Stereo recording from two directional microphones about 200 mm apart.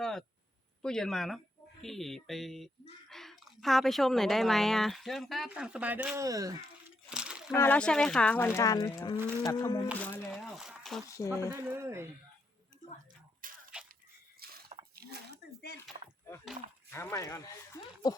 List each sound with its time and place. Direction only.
0.0 s a sound: centre (ahead or behind)
0.8 s speech: 5° left (ahead or behind); by 6.6 s 15° right (ahead or behind)
7.1 s splash: 5° right (ahead or behind)
7.5 s speech: 10° left (ahead or behind)
8.5 s speech: 15° left (ahead or behind)
10.0 s a sound: 5° left (ahead or behind)
11.3 s speech: 15° right (ahead or behind)
13.4 s a sound: 45° right (ahead or behind)
16.9 s speech: 15° left (ahead or behind)